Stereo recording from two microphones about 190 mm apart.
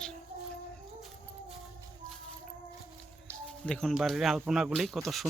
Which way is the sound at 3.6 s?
5° left (ahead or behind).